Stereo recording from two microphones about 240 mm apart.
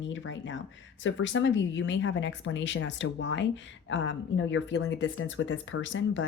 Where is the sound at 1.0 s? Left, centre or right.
Left.